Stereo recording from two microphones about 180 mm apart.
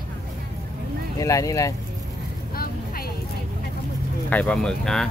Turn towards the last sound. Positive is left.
turn(degrees=5)  # may be behind; listen again after turning